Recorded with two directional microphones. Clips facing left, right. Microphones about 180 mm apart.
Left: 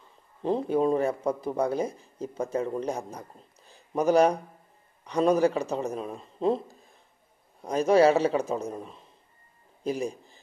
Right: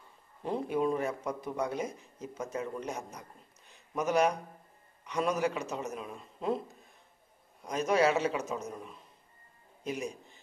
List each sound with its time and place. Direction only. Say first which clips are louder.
0.4 s speech: left 6 dB; 30° left (ahead or behind)
7.6 s a man's voice: left 7 dB; 30° left (ahead or behind)